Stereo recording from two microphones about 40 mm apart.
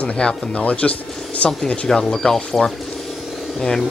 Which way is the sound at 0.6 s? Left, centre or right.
Left.